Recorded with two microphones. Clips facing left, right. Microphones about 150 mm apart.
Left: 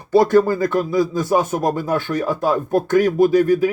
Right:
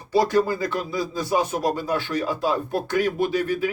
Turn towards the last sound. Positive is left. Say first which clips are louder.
# left 9 dB
turn(degrees=40)  # may be behind; listen again after turning